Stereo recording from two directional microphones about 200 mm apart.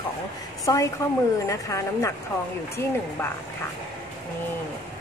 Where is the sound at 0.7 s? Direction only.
20° left (ahead or behind).